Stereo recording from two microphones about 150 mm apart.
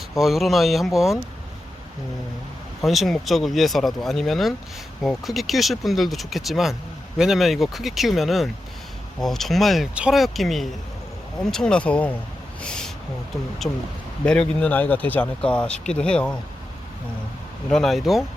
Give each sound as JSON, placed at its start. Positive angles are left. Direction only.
{"t": 0.1, "sound": "speech", "side_deg": 0}
{"t": 2.8, "sound": "speech", "side_deg": 0}
{"t": 13.6, "sound": "speech", "side_deg": 20}
{"t": 14.3, "sound": "speech", "side_deg": 5}
{"t": 17.7, "sound": "speech", "side_deg": 0}